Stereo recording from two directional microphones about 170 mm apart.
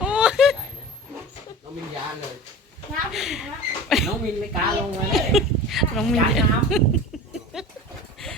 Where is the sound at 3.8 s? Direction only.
Centre (ahead or behind).